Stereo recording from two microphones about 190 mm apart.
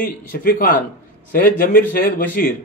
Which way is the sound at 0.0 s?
50° left (ahead or behind).